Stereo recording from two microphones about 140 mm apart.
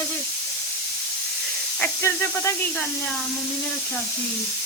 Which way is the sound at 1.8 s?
20° left (ahead or behind).